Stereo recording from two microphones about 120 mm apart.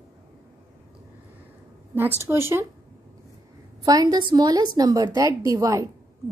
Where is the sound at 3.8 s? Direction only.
35° right (ahead or behind).